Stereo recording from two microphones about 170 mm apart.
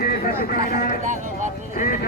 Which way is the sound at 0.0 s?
60° left (ahead or behind).